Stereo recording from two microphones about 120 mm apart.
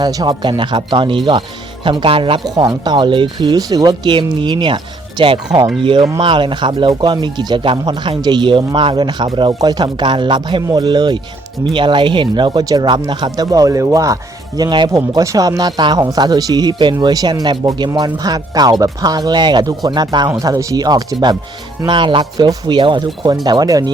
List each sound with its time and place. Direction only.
0.0 s speech: 35° right (ahead or behind)
2.4 s speech: 35° right (ahead or behind)